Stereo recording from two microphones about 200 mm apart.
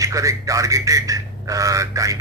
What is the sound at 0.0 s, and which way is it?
Speech, 15° right (ahead or behind).